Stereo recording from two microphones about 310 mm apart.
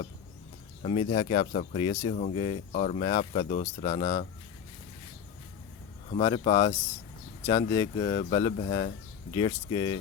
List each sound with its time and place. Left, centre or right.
0.8 s speech: centre
6.1 s speech: centre